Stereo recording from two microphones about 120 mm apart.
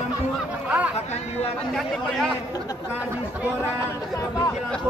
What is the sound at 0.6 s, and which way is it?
Speech, 10° right (ahead or behind).